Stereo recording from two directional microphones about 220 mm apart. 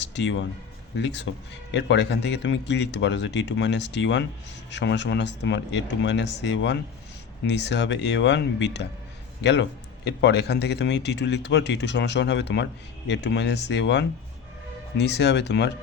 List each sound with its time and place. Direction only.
0.0 s a man's voice: 55° left (ahead or behind)